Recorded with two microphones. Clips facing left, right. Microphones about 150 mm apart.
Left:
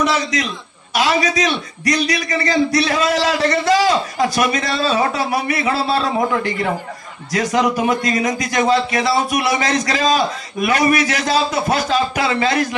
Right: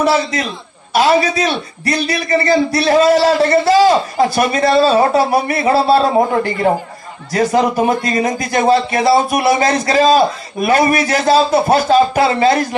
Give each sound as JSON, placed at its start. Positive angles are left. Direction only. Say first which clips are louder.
{"t": 0.0, "sound": "a man's voice", "louder": "right 4 dB", "side_deg": -35}